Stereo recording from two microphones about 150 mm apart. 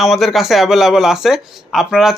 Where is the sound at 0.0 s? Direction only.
Centre (ahead or behind).